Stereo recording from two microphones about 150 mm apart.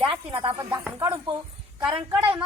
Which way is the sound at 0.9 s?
15° right (ahead or behind).